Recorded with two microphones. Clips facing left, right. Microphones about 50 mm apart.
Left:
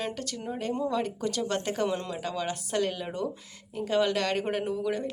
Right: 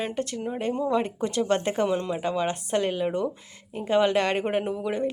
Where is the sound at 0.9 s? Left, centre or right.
Right.